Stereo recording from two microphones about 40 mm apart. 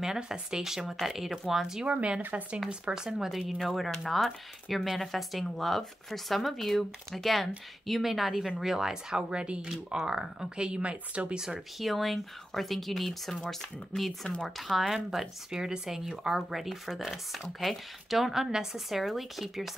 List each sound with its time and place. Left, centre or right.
0.0 s speech: centre
1.9 s speech: right
2.9 s speech: centre
9.3 s speech: right
11.8 s speech: centre
15.0 s speech: centre
18.9 s speech: centre